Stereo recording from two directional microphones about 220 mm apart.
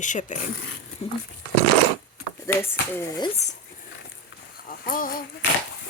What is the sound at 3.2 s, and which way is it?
Speech, 30° left (ahead or behind).